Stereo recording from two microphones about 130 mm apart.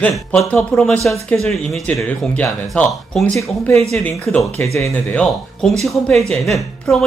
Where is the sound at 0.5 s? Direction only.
5° left (ahead or behind).